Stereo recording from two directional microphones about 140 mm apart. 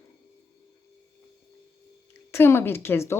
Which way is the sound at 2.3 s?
20° left (ahead or behind).